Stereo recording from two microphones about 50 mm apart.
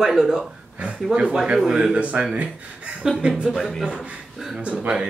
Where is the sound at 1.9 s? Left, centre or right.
Right.